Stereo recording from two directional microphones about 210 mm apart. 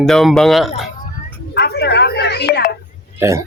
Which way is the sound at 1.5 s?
50° left (ahead or behind).